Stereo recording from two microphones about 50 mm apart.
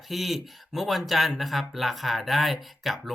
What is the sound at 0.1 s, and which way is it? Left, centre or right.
Speech, centre.